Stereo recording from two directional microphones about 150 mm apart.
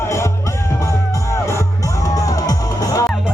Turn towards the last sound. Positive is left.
turn(degrees=25)  # may be behind; listen again after turning